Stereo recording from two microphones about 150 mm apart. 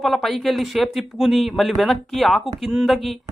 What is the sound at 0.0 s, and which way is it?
Speech, centre (ahead or behind).